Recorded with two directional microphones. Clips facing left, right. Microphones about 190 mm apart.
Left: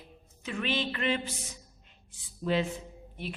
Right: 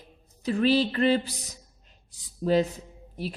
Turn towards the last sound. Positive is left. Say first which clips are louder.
# right 5 dB
turn(degrees=-40)  # may be behind; listen again after turning